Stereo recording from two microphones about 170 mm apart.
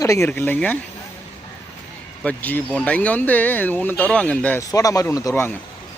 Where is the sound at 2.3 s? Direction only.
10° left (ahead or behind).